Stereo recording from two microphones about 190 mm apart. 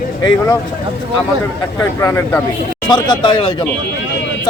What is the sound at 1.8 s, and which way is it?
Speech, 15° left (ahead or behind).